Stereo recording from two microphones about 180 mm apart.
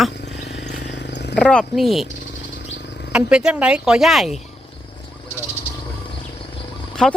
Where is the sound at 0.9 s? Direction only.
70° left (ahead or behind).